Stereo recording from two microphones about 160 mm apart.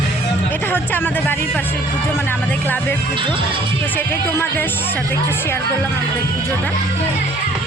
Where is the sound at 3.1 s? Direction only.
30° right (ahead or behind).